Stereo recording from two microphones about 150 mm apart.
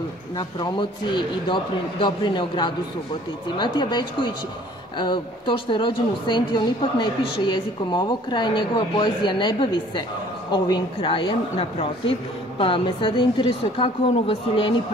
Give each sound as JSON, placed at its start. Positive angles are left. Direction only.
{"t": 0.4, "sound": "a woman's voice", "side_deg": 30}